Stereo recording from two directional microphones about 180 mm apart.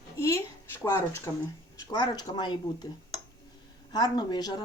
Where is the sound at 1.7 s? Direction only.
20° left (ahead or behind).